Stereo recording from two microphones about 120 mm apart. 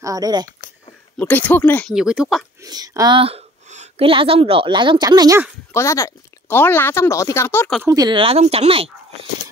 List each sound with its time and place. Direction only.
0.0 s speech: 30° right (ahead or behind)
1.1 s speech: 10° left (ahead or behind)
1.9 s speech: 5° right (ahead or behind)
2.6 s speech: 30° right (ahead or behind)
4.0 s a woman's voice: 50° right (ahead or behind)
5.7 s speech: 25° left (ahead or behind)
7.8 s speech: 30° right (ahead or behind)
8.1 s a woman's voice: 45° right (ahead or behind)